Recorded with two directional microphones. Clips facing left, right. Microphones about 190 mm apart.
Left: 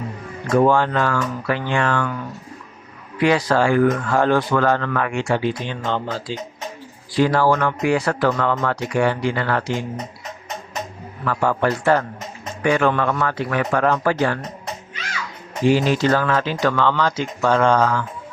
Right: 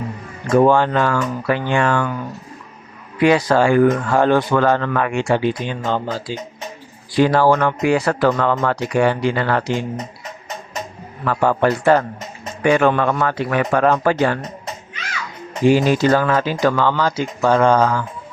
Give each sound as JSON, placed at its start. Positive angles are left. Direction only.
{"t": 0.5, "sound": "speech", "side_deg": -20}
{"t": 3.2, "sound": "speech", "side_deg": -15}
{"t": 7.2, "sound": "a man's voice", "side_deg": -25}
{"t": 8.9, "sound": "a man's voice", "side_deg": -20}
{"t": 11.3, "sound": "a man's voice", "side_deg": -25}
{"t": 15.6, "sound": "speech", "side_deg": -10}